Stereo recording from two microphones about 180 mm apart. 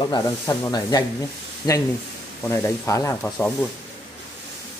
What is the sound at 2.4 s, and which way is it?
Speech, 15° left (ahead or behind).